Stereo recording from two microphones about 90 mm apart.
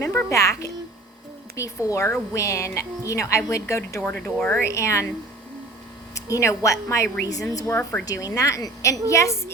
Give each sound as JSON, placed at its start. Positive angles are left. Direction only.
{"t": 0.0, "sound": "a woman's voice", "side_deg": 35}
{"t": 4.2, "sound": "speech", "side_deg": 15}
{"t": 4.6, "sound": "a woman's voice", "side_deg": 35}
{"t": 6.1, "sound": "a woman's voice", "side_deg": 35}